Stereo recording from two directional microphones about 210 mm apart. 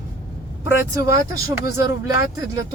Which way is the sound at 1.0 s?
15° right (ahead or behind).